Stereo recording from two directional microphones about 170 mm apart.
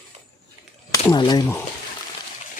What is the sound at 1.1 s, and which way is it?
Speech, 25° left (ahead or behind).